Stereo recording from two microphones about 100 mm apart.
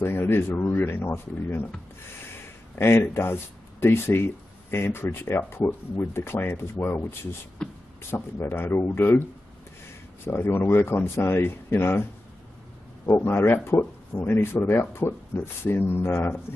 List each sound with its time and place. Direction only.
0.0 s speech: 20° left (ahead or behind)
2.3 s a sound: 25° left (ahead or behind)
3.8 s speech: 25° left (ahead or behind)
10.2 s speech: 20° left (ahead or behind)